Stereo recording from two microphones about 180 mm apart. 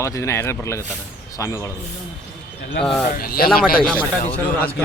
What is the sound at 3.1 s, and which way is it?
Speech, 55° left (ahead or behind).